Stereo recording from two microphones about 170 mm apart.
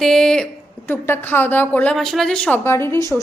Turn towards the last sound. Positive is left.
turn(degrees=15)  # may be behind; listen again after turning